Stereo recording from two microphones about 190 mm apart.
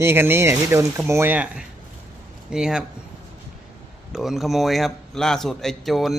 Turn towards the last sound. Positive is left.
turn(degrees=0)  # may be behind; listen again after turning